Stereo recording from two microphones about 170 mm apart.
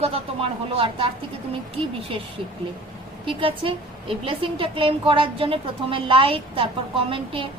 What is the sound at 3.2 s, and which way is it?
A woman's voice, 30° right (ahead or behind).